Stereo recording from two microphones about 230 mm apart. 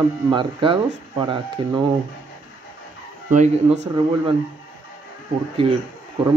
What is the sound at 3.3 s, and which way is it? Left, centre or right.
Speech, right.